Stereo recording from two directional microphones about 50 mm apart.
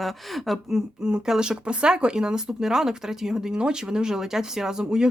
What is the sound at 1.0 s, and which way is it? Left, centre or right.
Speech, centre.